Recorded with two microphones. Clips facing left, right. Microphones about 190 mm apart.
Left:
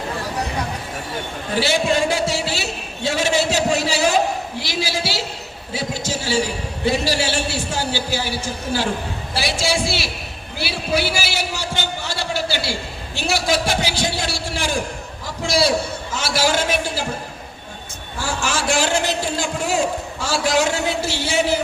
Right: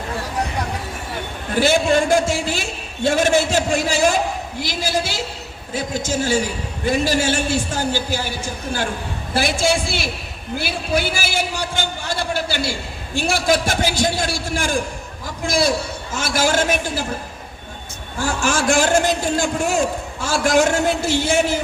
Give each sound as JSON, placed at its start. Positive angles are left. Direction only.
{"t": 1.5, "sound": "a man's voice", "side_deg": -50}
{"t": 9.3, "sound": "a man's voice", "side_deg": -50}
{"t": 18.4, "sound": "a man's voice", "side_deg": -50}